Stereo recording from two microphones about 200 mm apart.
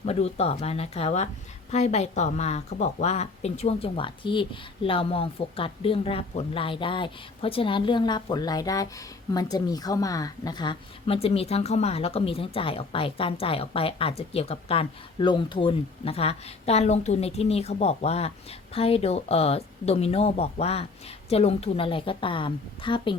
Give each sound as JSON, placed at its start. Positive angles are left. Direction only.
{"t": 0.0, "sound": "a woman's voice", "side_deg": 30}